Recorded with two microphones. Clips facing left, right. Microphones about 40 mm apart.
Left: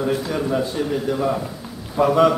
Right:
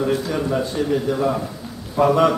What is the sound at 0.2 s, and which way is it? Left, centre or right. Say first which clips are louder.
A man's voice: even; centre.